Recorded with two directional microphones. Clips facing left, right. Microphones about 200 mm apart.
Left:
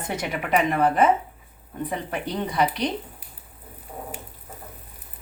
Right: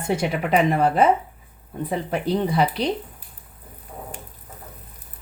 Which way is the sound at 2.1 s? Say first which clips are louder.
Right 6 dB; 30° right (ahead or behind).